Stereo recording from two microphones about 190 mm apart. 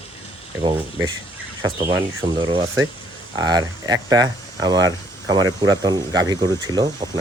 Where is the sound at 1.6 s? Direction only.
20° right (ahead or behind).